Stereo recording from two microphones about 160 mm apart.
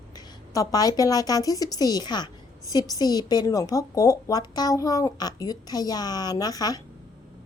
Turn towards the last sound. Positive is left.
turn(degrees=25)  # may be behind; listen again after turning